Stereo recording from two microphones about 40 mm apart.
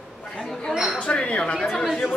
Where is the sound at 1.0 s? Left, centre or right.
Left.